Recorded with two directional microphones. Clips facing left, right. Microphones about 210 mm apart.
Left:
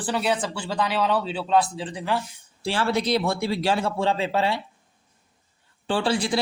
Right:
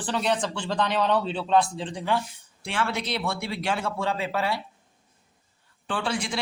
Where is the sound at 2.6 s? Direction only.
35° left (ahead or behind).